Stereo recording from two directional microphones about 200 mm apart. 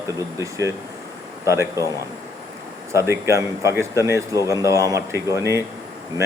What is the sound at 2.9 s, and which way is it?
Speech, 15° right (ahead or behind).